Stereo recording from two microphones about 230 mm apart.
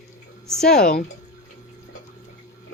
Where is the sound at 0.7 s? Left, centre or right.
Left.